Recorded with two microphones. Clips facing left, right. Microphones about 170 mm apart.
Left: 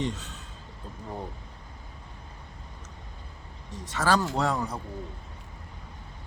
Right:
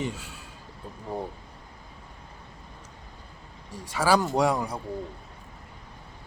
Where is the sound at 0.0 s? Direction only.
10° right (ahead or behind).